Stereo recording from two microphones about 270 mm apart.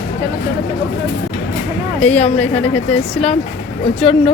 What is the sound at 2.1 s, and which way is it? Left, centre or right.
Speech, left.